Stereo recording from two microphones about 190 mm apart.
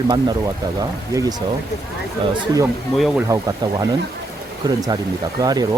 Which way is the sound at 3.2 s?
15° right (ahead or behind).